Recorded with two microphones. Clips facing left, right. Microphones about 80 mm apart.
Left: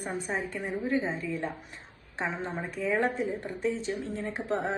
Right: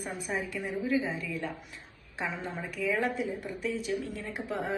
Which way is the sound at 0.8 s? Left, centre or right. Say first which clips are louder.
Even; left.